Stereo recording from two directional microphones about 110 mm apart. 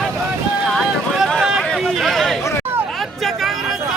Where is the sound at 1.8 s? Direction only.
Centre (ahead or behind).